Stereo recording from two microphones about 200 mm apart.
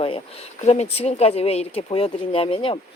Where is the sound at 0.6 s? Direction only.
30° left (ahead or behind).